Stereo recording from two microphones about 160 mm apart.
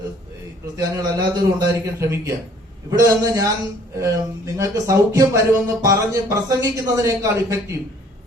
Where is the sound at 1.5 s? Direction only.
20° right (ahead or behind).